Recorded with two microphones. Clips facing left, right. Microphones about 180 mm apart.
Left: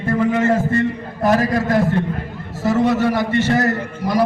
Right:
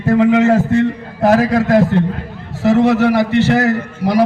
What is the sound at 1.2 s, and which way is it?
A man's voice, 75° right (ahead or behind).